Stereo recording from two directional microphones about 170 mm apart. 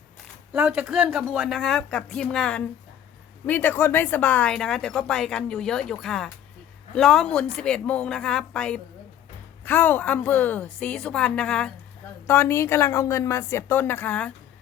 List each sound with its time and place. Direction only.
0.5 s a woman's voice: 10° right (ahead or behind); by 14.3 s 10° left (ahead or behind)